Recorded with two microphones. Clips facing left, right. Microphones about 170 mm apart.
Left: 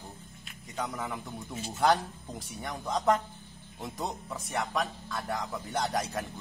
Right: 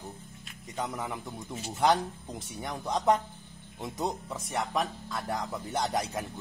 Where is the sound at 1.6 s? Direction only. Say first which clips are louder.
Even; centre (ahead or behind).